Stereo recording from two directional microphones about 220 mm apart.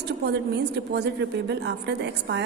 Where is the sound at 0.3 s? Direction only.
50° right (ahead or behind).